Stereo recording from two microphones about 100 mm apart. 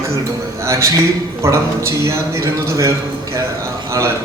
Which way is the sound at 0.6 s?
30° right (ahead or behind).